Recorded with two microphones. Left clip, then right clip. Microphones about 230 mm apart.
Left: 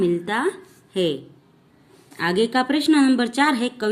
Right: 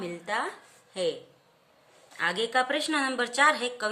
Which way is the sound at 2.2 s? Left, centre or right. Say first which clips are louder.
Left 6 dB; centre.